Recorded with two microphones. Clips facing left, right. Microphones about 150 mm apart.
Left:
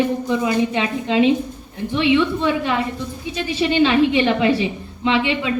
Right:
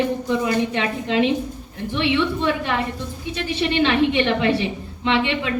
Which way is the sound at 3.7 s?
25° left (ahead or behind).